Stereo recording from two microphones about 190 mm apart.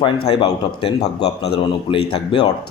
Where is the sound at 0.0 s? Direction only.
25° left (ahead or behind).